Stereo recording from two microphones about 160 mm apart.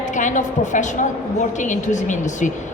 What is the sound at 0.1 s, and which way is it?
A woman's voice, 50° left (ahead or behind).